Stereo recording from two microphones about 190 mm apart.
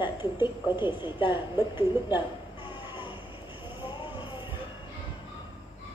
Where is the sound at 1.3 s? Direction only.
25° left (ahead or behind).